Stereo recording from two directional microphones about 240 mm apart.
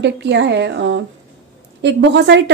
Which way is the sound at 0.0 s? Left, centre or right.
Right.